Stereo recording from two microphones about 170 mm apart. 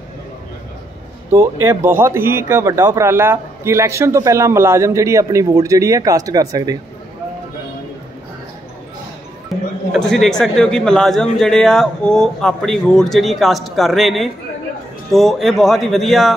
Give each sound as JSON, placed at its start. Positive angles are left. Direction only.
{"t": 1.3, "sound": "speech", "side_deg": -20}
{"t": 9.5, "sound": "a sound", "side_deg": 0}
{"t": 9.9, "sound": "a man's voice", "side_deg": 0}